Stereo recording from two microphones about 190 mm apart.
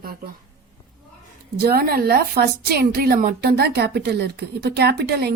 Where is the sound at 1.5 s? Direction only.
50° right (ahead or behind).